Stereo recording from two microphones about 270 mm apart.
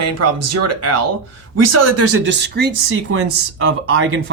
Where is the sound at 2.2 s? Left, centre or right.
Right.